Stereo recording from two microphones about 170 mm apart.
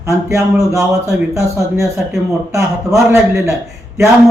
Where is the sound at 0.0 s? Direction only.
15° right (ahead or behind).